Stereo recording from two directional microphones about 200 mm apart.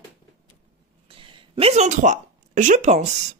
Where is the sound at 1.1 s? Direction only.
25° right (ahead or behind).